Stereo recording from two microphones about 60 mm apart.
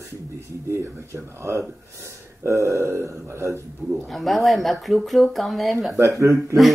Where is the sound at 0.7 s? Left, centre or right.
Right.